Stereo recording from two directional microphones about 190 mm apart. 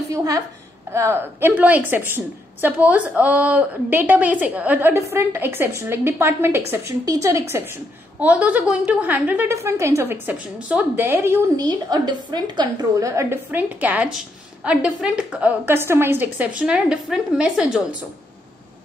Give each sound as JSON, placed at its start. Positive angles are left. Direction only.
{"t": 0.1, "sound": "a woman's voice", "side_deg": -15}